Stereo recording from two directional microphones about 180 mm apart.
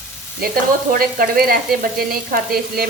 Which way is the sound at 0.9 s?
55° right (ahead or behind).